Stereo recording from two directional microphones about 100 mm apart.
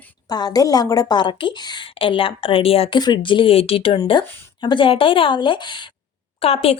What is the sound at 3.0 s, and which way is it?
A woman's voice, 45° left (ahead or behind).